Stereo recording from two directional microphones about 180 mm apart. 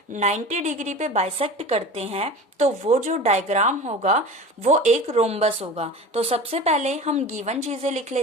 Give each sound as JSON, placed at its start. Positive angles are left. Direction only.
{"t": 0.2, "sound": "a woman's voice", "side_deg": -40}